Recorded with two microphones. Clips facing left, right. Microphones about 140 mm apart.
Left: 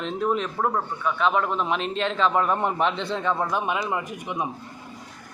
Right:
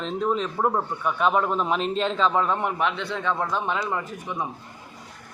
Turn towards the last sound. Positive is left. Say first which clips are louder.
# left 1 dB
turn(degrees=15)  # may be behind; listen again after turning